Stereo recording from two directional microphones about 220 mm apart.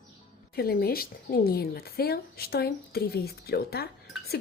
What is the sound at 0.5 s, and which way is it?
Speech, 45° left (ahead or behind).